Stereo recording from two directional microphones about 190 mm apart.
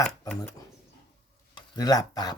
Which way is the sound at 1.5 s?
20° left (ahead or behind).